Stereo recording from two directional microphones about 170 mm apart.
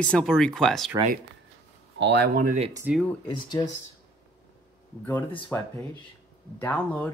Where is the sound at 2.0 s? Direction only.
85° right; by 2.6 s 55° right (ahead or behind).